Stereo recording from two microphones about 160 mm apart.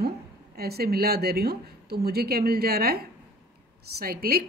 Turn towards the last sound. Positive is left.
turn(degrees=-75)  # may be behind; listen again after turning